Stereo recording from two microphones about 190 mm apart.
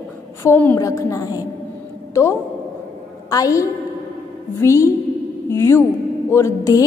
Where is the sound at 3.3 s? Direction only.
20° left (ahead or behind).